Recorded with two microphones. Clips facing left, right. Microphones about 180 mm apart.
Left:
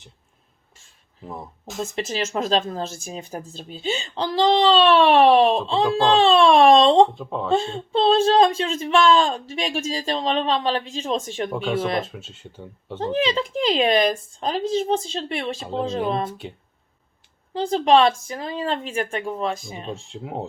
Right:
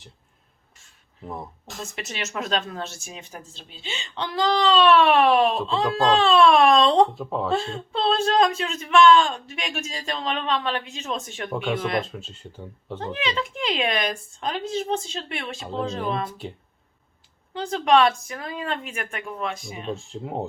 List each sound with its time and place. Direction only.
1.2 s speech: centre (ahead or behind)
1.8 s speech: 30° left (ahead or behind)
7.2 s speech: 5° right (ahead or behind)
7.5 s speech: 30° left (ahead or behind)
11.5 s speech: centre (ahead or behind)
11.8 s speech: 30° left (ahead or behind)
12.1 s speech: 5° left (ahead or behind)
13.0 s speech: 30° left (ahead or behind)
17.5 s speech: 30° left (ahead or behind)
20.1 s speech: centre (ahead or behind)